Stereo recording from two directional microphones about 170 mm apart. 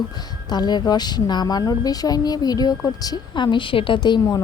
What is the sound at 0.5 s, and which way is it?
Speech, 25° left (ahead or behind).